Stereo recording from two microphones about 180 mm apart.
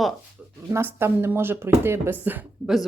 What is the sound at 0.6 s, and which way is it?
Speech, 15° right (ahead or behind).